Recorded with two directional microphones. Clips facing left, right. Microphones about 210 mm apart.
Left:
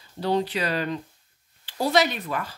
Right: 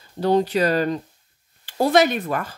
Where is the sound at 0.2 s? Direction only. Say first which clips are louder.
Right 6 dB; 45° right (ahead or behind).